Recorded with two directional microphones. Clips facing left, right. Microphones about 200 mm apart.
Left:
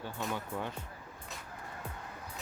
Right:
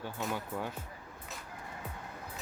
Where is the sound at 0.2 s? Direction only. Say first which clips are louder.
Even; 5° right (ahead or behind).